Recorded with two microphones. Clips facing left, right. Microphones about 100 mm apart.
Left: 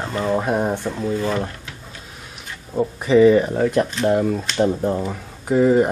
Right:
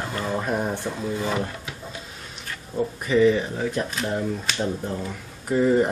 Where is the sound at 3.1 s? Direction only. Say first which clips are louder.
Left 6 dB; 40° left (ahead or behind).